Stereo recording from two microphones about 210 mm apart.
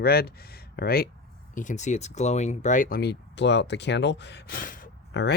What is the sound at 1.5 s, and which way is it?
Speech, 35° left (ahead or behind).